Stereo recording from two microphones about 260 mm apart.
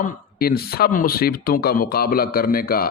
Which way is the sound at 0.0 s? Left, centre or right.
Left.